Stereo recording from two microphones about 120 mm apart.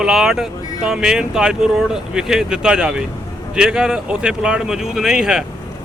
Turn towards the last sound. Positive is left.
turn(degrees=-5)  # may be behind; listen again after turning